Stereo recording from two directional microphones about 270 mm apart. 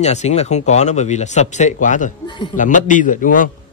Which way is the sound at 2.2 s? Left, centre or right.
Centre.